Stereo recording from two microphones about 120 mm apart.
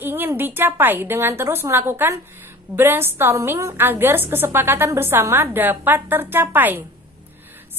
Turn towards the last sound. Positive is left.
turn(degrees=-15)  # may be behind; listen again after turning